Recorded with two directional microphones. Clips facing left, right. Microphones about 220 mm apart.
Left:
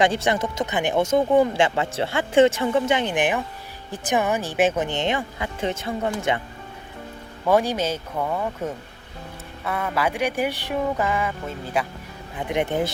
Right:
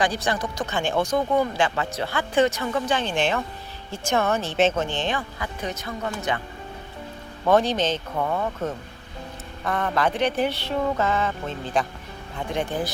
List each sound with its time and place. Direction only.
0.0 s speech: 25° left (ahead or behind)
7.4 s speech: 10° left (ahead or behind)
12.4 s speech: 20° left (ahead or behind)